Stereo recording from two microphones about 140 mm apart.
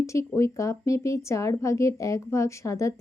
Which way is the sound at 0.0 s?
20° left (ahead or behind).